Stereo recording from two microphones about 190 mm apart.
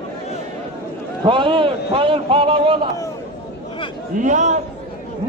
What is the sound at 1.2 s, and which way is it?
A man's voice, 25° right (ahead or behind).